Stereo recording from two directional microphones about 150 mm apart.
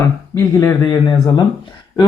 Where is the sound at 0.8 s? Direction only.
25° left (ahead or behind).